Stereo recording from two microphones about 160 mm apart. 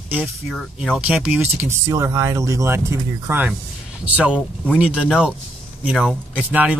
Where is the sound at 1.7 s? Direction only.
20° right (ahead or behind).